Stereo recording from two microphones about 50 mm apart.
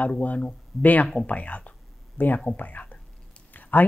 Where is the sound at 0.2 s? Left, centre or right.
Left.